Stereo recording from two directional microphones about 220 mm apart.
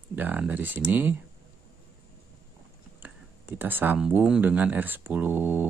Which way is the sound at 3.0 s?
10° right (ahead or behind).